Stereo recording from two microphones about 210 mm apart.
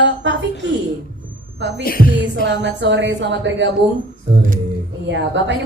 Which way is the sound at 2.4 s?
60° right (ahead or behind).